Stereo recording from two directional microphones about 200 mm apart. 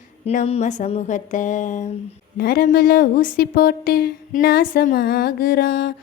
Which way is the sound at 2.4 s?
50° left (ahead or behind).